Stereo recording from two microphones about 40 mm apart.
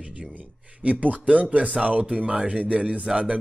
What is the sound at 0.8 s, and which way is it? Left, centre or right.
A man's voice, right.